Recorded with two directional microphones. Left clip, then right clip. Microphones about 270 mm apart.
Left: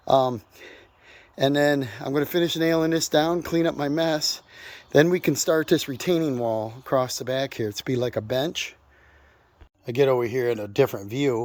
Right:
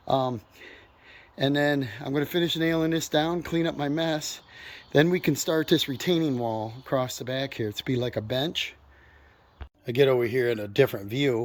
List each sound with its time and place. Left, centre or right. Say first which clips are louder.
0.0 s speech: left 6 dB; centre
9.8 s speech: left 1 dB; centre